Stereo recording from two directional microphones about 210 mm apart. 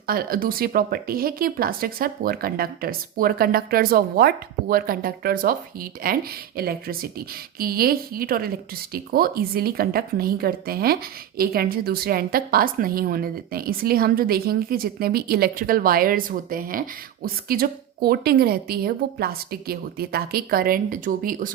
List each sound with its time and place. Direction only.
0.1 s a woman's voice: 45° right (ahead or behind)